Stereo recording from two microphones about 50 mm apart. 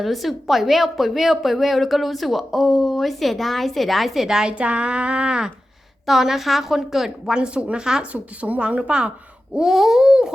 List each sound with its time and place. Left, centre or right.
0.0 s a woman's voice: centre
4.5 s a woman's voice: right
6.1 s a woman's voice: centre
7.3 s a sound: right
8.1 s a woman's voice: right
9.6 s a sound: centre